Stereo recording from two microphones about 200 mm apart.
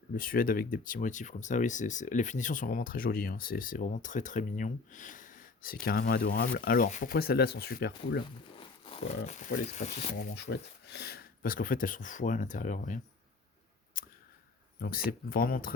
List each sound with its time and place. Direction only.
0.2 s speech: 45° left (ahead or behind)
8.5 s speech: 25° left (ahead or behind)
10.3 s speech: 60° left (ahead or behind); by 13.0 s 40° left (ahead or behind)
14.0 s a sound: 45° left (ahead or behind)
14.8 s speech: 45° left (ahead or behind)